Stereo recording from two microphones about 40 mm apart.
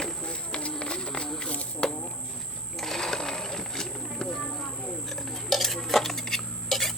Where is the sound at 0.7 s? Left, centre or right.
Left.